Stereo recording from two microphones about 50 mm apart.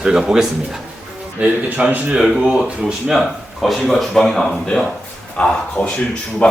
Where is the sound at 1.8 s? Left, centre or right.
Centre.